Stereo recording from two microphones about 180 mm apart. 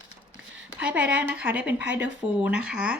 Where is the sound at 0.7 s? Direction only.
5° right (ahead or behind).